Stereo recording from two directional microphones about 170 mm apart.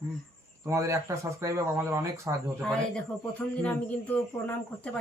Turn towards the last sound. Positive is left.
turn(degrees=5)  # may be behind; listen again after turning